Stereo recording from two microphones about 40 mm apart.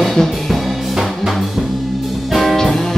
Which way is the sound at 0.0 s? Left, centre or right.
Centre.